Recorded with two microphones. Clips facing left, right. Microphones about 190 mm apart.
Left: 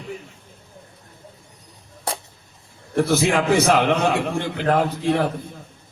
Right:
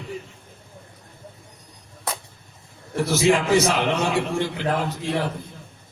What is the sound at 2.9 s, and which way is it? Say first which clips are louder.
A man's voice: left 1 dB; 60° left (ahead or behind).